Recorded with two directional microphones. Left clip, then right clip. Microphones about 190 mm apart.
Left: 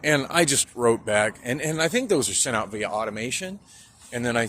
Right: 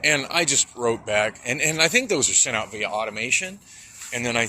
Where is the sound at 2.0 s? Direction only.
30° left (ahead or behind).